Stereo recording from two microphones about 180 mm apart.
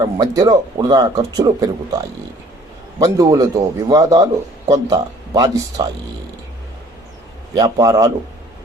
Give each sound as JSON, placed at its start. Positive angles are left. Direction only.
{"t": 0.0, "sound": "speech", "side_deg": -20}
{"t": 3.0, "sound": "speech", "side_deg": -20}
{"t": 7.5, "sound": "speech", "side_deg": -20}